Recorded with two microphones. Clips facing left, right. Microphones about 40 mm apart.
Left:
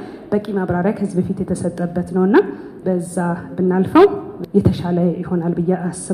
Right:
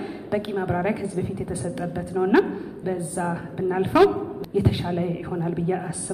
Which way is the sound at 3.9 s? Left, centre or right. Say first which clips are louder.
Left 6 dB; left.